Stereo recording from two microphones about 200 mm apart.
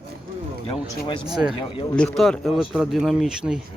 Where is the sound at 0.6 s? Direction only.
25° left (ahead or behind).